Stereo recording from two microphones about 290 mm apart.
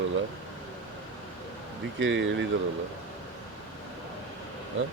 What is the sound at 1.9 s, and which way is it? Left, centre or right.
Speech, right.